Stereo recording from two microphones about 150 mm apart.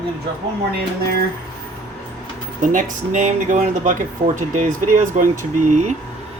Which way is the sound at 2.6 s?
60° right (ahead or behind).